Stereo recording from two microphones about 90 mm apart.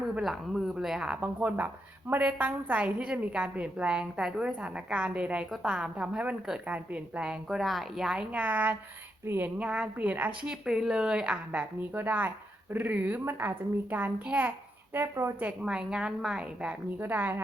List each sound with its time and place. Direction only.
0.2 s a child's voice: centre (ahead or behind); by 9.5 s 25° right (ahead or behind)
9.6 s a child's voice: 10° right (ahead or behind)
14.9 s a child's voice: 30° right (ahead or behind)
15.4 s a child's voice: 15° right (ahead or behind)